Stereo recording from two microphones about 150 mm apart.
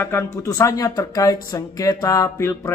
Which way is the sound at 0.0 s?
15° left (ahead or behind).